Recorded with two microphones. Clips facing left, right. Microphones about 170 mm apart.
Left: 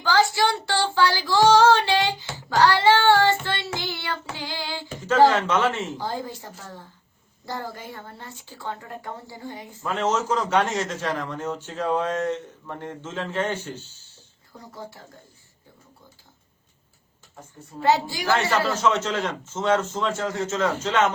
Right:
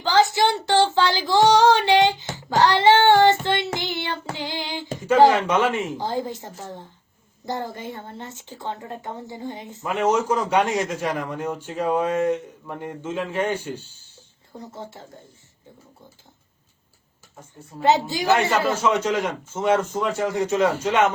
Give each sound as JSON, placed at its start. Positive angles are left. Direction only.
{"t": 0.0, "sound": "child singing", "side_deg": -20}
{"t": 5.0, "sound": "speech", "side_deg": -10}
{"t": 14.6, "sound": "a woman's voice", "side_deg": -25}
{"t": 17.8, "sound": "a woman's voice", "side_deg": -20}